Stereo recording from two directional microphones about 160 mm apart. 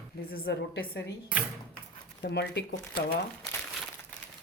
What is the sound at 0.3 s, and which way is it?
Speech, 75° left (ahead or behind).